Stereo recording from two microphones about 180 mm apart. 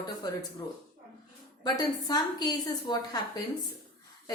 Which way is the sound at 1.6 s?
20° left (ahead or behind).